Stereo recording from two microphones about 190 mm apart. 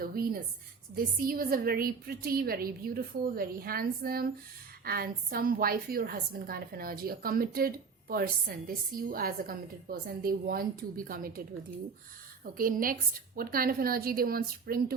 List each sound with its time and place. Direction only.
0.0 s a woman's voice: 50° right (ahead or behind)
12.5 s a woman's voice: 45° right (ahead or behind)